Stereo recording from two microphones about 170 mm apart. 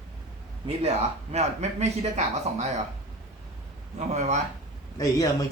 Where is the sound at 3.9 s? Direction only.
40° right (ahead or behind).